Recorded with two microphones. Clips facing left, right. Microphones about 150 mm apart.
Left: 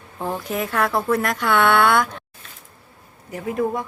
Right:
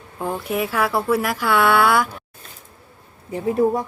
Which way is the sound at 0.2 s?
Centre (ahead or behind).